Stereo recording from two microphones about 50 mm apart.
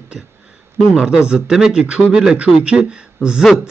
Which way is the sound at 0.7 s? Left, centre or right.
Centre.